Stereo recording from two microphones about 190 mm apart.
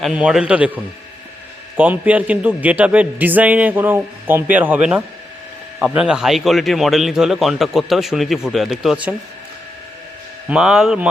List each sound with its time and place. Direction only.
0.0 s a man's voice: 5° right (ahead or behind)
10.5 s a man's voice: 5° right (ahead or behind)